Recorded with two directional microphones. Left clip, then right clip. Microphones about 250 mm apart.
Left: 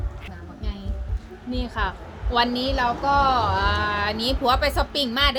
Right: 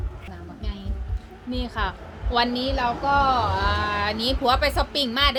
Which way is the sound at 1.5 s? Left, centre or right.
Centre.